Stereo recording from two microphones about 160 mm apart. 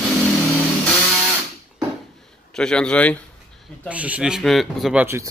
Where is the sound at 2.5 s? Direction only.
5° left (ahead or behind).